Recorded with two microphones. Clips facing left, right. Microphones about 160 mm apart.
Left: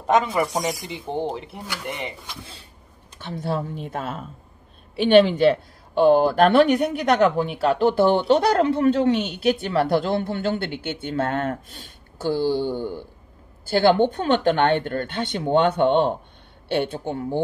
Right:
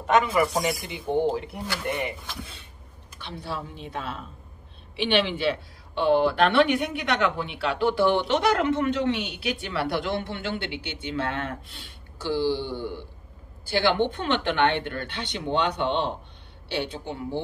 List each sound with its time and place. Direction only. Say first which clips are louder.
0.3 s speech: even; 20° left (ahead or behind)
3.2 s speech: left 7 dB; 45° left (ahead or behind)